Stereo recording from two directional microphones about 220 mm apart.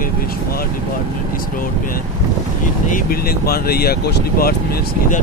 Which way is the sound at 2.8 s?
40° left (ahead or behind).